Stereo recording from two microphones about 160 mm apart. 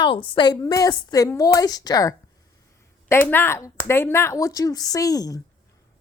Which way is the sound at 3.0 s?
10° left (ahead or behind).